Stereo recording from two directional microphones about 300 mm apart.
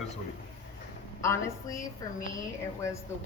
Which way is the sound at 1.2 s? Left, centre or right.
Centre.